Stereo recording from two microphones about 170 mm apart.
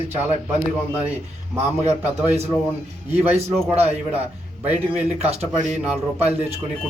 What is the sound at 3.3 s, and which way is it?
Speech, 35° right (ahead or behind).